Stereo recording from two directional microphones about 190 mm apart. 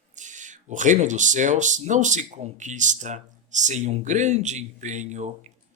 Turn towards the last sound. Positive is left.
turn(degrees=-40)  # may be behind; listen again after turning